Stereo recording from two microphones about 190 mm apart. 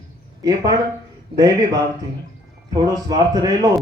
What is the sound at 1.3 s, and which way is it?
A man's voice, 20° right (ahead or behind).